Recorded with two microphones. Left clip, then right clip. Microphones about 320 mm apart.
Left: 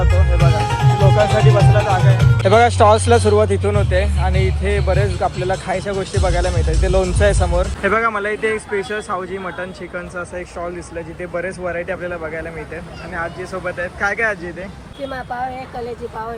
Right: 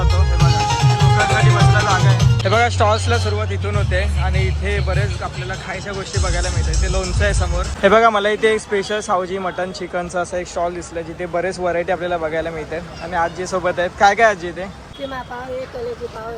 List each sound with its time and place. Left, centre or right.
0.7 s music: right
1.7 s speech: centre